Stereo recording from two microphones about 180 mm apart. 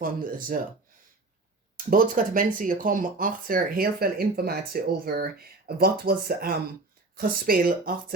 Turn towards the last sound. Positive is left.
turn(degrees=-55)  # may be behind; listen again after turning